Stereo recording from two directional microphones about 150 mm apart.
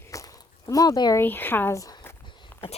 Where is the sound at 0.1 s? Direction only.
20° left (ahead or behind).